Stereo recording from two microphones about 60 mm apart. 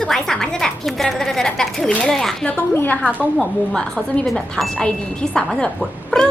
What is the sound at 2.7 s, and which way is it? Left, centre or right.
Speech, left.